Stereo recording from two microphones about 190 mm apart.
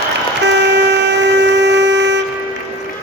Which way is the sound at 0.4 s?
65° right (ahead or behind).